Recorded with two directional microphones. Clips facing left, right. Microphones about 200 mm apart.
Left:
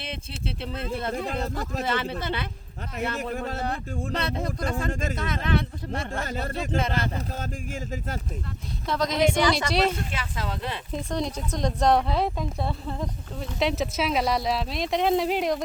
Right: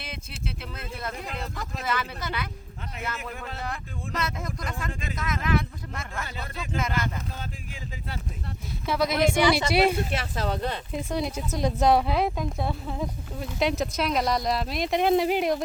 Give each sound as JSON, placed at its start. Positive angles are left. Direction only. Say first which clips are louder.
{"t": 0.0, "sound": "speech", "louder": "left 3 dB", "side_deg": 30}
{"t": 1.8, "sound": "speech", "louder": "left 2 dB", "side_deg": 25}
{"t": 4.9, "sound": "speech", "louder": "left 6 dB", "side_deg": 45}
{"t": 5.1, "sound": "speech", "louder": "right 3 dB", "side_deg": 30}
{"t": 6.2, "sound": "speech", "louder": "left 7 dB", "side_deg": 45}
{"t": 6.7, "sound": "speech", "louder": "left 1 dB", "side_deg": 30}
{"t": 8.9, "sound": "speech", "louder": "even", "side_deg": -10}
{"t": 10.3, "sound": "speech", "louder": "right 3 dB", "side_deg": -40}
{"t": 10.9, "sound": "speech", "louder": "left 3 dB", "side_deg": -5}